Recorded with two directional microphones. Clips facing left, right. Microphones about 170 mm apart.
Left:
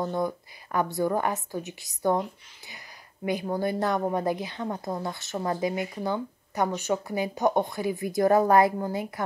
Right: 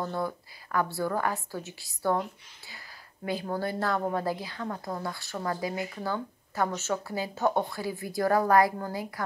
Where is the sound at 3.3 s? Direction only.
15° left (ahead or behind).